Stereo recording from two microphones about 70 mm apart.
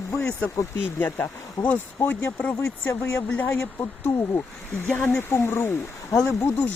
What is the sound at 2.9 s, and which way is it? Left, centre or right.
Speech, left.